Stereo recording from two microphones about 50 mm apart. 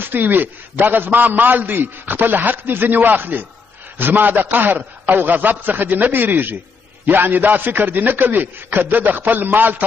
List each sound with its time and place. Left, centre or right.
0.0 s a man's voice: right